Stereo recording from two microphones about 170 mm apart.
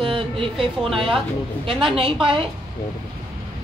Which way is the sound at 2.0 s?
30° right (ahead or behind).